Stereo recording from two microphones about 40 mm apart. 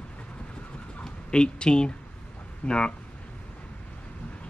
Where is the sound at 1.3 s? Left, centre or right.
Left.